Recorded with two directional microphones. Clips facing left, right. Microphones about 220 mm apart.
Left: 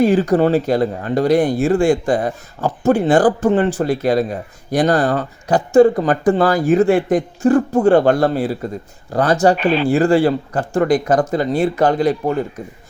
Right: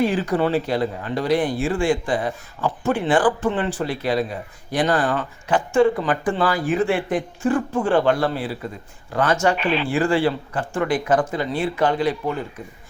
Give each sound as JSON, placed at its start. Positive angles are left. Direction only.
{"t": 0.0, "sound": "speech", "side_deg": 40}